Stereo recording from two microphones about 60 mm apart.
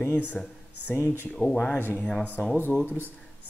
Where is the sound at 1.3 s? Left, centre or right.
Centre.